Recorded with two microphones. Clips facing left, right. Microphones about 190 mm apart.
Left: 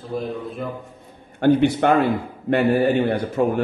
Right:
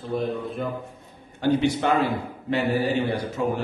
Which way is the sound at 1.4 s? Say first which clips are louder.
Left 5 dB; 55° left (ahead or behind).